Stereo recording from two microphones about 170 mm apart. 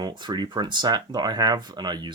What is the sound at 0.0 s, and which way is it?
Speech, 25° right (ahead or behind).